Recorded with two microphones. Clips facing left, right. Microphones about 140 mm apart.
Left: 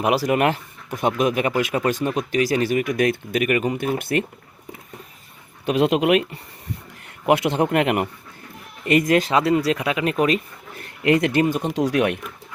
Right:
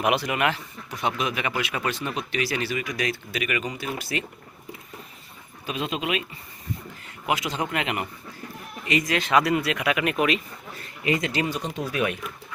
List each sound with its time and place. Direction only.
0.0 s speech: 35° left (ahead or behind); by 4.3 s 55° left (ahead or behind)
5.6 s speech: 70° left (ahead or behind); by 9.2 s 55° left (ahead or behind)
9.2 s speech: 25° left (ahead or behind)
10.8 s speech: 65° left (ahead or behind); by 11.7 s 50° left (ahead or behind)
11.7 s speech: 85° left; by 12.2 s 70° left (ahead or behind)